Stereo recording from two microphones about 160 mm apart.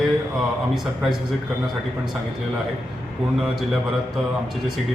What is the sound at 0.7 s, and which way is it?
Speech, centre (ahead or behind).